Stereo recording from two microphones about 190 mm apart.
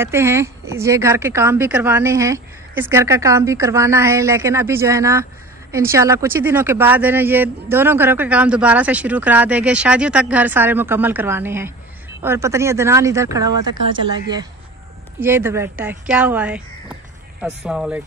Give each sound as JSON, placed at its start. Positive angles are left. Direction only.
{"t": 0.0, "sound": "speech", "side_deg": -15}
{"t": 15.1, "sound": "speech", "side_deg": -10}